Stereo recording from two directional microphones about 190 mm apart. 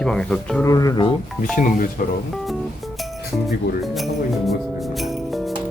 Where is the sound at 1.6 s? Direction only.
45° left (ahead or behind).